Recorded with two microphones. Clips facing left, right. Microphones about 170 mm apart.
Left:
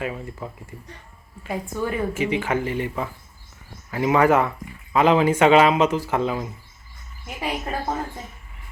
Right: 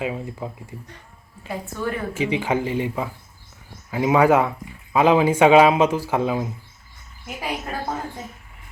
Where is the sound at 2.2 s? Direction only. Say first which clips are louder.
Right 4 dB; 15° right (ahead or behind).